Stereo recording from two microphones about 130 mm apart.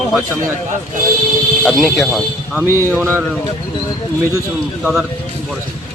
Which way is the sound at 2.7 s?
20° right (ahead or behind).